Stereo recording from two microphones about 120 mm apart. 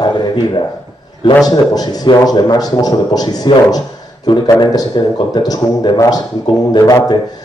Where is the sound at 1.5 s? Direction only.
35° left (ahead or behind).